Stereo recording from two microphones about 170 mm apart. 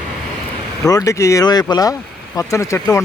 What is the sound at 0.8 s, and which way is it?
Speech, 20° left (ahead or behind).